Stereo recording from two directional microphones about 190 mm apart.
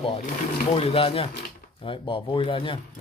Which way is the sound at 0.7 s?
30° left (ahead or behind).